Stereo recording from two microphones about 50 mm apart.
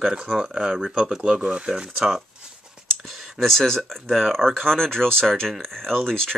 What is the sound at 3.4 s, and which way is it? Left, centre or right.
Speech, centre.